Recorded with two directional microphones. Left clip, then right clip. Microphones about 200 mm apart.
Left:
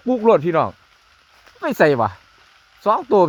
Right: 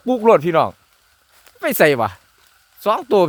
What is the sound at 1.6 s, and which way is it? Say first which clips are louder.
Speech: right 1 dB; 25° right (ahead or behind).